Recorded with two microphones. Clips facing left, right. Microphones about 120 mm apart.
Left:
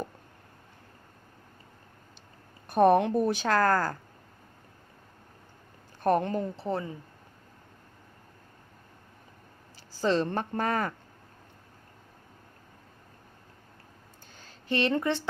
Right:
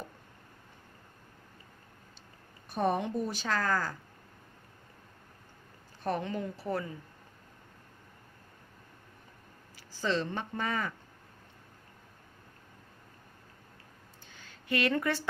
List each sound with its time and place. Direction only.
2.6 s a woman's voice: 60° left (ahead or behind)
6.0 s speech: 50° left (ahead or behind)
6.6 s speech: 25° left (ahead or behind)
10.0 s speech: 40° left (ahead or behind)
14.3 s a sound: 35° left (ahead or behind)